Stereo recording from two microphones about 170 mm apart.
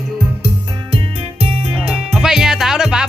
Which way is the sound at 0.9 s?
35° right (ahead or behind).